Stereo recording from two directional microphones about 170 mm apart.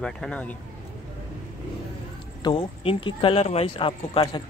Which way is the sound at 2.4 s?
30° left (ahead or behind).